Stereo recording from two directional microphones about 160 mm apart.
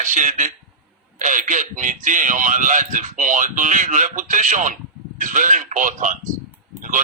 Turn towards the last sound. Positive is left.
turn(degrees=-55)  # may be behind; listen again after turning